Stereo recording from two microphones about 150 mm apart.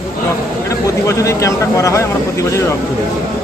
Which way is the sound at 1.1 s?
20° left (ahead or behind).